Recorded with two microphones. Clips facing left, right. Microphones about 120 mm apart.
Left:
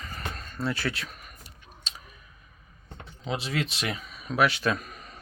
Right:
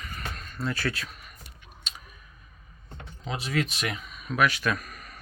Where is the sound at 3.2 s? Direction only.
30° left (ahead or behind).